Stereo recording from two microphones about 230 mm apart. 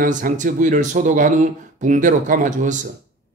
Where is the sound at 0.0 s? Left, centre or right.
Right.